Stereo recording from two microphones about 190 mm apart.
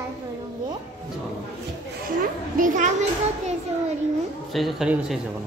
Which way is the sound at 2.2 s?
45° right (ahead or behind).